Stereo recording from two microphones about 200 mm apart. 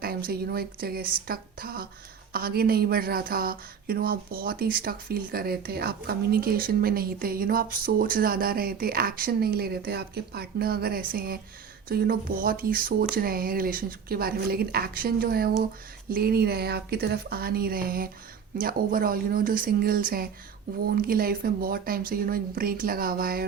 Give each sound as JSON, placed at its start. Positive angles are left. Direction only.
{"t": 0.0, "sound": "speech", "side_deg": -45}